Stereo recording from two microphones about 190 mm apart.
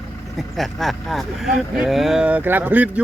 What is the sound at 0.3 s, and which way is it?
Speech, centre (ahead or behind).